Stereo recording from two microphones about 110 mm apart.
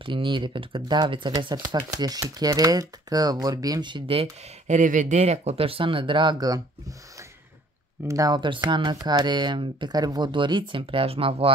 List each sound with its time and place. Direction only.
0.0 s speech: 50° right (ahead or behind)
8.0 s speech: 30° right (ahead or behind)
8.5 s speech: 45° right (ahead or behind)